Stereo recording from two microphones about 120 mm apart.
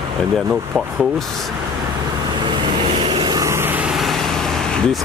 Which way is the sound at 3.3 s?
25° right (ahead or behind).